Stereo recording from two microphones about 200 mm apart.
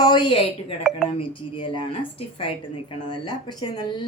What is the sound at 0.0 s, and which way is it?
Speech, 20° left (ahead or behind).